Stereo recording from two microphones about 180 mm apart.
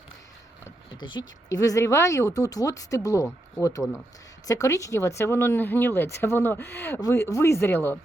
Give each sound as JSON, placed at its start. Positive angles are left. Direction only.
{"t": 0.9, "sound": "speech", "side_deg": 25}